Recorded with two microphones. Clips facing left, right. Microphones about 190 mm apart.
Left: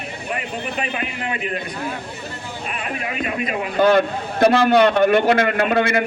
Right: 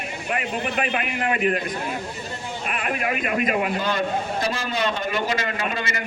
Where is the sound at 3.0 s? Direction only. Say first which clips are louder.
Right 1 dB; 50° right (ahead or behind).